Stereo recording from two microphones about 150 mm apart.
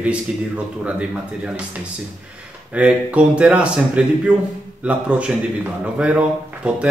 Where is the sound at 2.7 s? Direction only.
10° right (ahead or behind).